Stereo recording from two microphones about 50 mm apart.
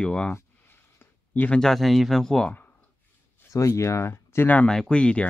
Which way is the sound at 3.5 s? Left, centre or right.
Left.